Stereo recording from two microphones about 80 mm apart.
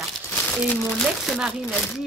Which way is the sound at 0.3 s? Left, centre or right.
Centre.